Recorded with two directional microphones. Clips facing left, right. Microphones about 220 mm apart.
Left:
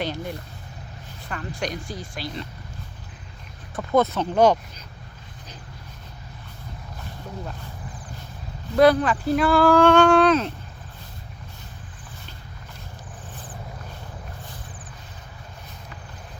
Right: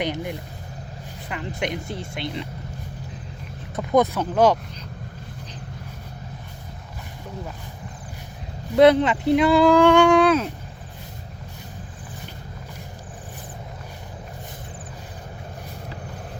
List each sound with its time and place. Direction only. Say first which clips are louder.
0.0 s speech: right 2 dB; 20° right (ahead or behind)
3.8 s speech: right 1 dB; 15° right (ahead or behind)
8.7 s speech: right 2 dB; 20° right (ahead or behind)